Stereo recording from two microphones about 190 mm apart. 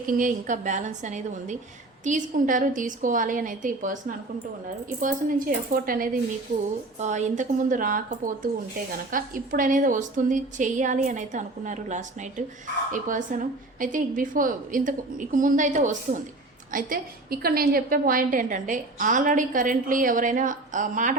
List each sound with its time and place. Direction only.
0.1 s a woman's voice: 45° right (ahead or behind)
4.9 s a woman's voice: 45° right (ahead or behind)